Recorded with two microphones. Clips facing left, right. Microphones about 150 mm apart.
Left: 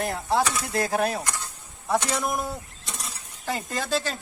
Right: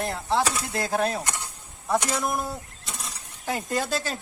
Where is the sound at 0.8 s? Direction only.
10° left (ahead or behind).